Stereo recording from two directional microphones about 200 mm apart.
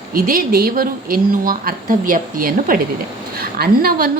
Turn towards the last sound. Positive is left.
turn(degrees=-50)  # may be behind; listen again after turning